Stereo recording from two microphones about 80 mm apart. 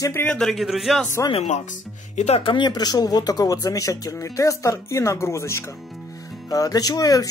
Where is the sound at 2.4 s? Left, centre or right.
Left.